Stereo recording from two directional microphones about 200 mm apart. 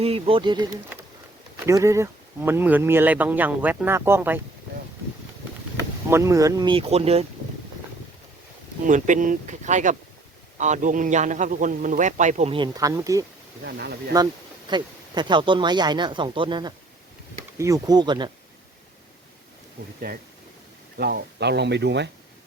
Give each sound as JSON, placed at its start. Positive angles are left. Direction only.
{"t": 0.0, "sound": "speech", "side_deg": -30}
{"t": 6.1, "sound": "speech", "side_deg": -15}
{"t": 8.8, "sound": "a man's voice", "side_deg": -40}
{"t": 13.7, "sound": "speech", "side_deg": -55}
{"t": 14.7, "sound": "speech", "side_deg": -20}
{"t": 21.0, "sound": "speech", "side_deg": -55}